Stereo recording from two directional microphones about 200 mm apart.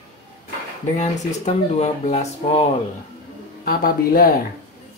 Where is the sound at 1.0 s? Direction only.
35° left (ahead or behind).